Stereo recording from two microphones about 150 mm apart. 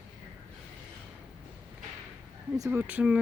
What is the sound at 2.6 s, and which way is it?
Speech, 15° right (ahead or behind).